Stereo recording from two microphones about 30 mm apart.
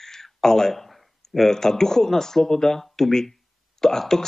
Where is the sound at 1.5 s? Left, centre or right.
Centre.